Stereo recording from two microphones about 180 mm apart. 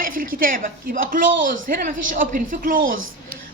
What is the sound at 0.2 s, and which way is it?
A woman's voice, 50° right (ahead or behind).